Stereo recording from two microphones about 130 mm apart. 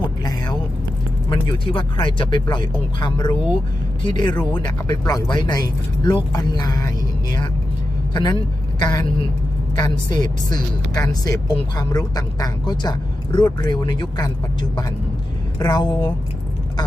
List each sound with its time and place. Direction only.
1.3 s speech: 40° left (ahead or behind)